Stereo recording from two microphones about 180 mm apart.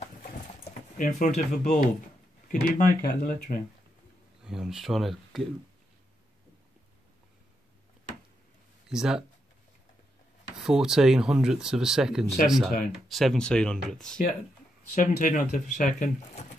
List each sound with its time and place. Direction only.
0.9 s speech: 45° left (ahead or behind)
4.5 s speech: 5° right (ahead or behind)
8.8 s speech: 5° right (ahead or behind)
10.6 s speech: 5° right (ahead or behind)
15.0 s speech: 45° left (ahead or behind)